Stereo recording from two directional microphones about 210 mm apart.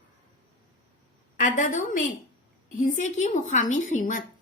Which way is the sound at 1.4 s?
40° left (ahead or behind).